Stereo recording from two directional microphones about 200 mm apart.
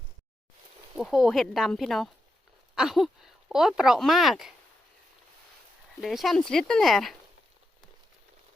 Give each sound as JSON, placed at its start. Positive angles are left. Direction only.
{"t": 0.9, "sound": "speech", "side_deg": 0}
{"t": 2.7, "sound": "a sound", "side_deg": 0}
{"t": 3.5, "sound": "speech", "side_deg": -5}
{"t": 6.0, "sound": "speech", "side_deg": 0}